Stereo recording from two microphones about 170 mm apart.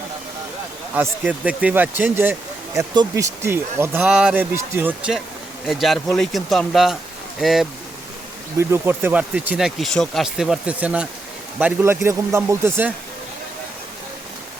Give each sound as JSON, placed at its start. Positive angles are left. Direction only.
{"t": 1.2, "sound": "speech", "side_deg": -10}
{"t": 2.7, "sound": "speech", "side_deg": -20}
{"t": 8.5, "sound": "speech", "side_deg": -15}